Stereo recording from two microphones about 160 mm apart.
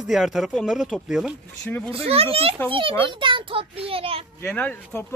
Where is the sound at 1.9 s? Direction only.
40° right (ahead or behind).